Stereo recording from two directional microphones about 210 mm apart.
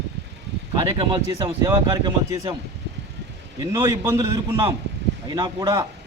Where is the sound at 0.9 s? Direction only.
20° right (ahead or behind).